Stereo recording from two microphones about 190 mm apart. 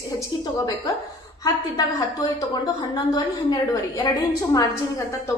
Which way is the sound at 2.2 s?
20° left (ahead or behind).